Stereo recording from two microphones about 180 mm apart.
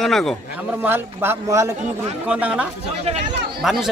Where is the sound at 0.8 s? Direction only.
10° right (ahead or behind).